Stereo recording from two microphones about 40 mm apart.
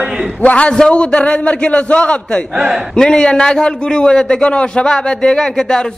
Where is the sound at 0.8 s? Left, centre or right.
Left.